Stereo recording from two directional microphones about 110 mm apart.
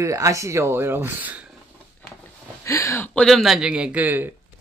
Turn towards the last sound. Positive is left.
turn(degrees=-15)  # may be behind; listen again after turning